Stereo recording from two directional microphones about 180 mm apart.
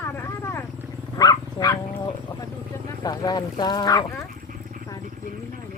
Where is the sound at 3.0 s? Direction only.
20° left (ahead or behind).